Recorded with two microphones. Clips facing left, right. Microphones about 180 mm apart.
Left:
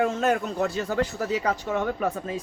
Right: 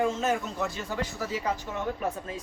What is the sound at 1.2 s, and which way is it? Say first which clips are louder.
Speech: left 5 dB; 75° left (ahead or behind).